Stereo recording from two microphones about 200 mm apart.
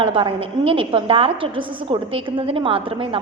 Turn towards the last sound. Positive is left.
turn(degrees=-25)  # may be behind; listen again after turning